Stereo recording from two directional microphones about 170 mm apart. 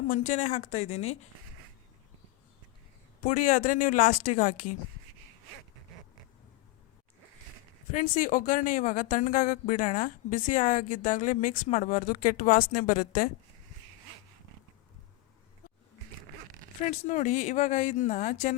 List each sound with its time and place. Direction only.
0.1 s a woman's voice: 45° left (ahead or behind)
3.2 s a woman's voice: 50° left (ahead or behind)
7.9 s a woman's voice: 50° left (ahead or behind)
17.1 s a woman's voice: 45° left (ahead or behind)